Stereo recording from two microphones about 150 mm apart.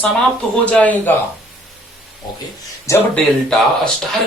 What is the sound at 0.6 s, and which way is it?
Speech, 10° left (ahead or behind).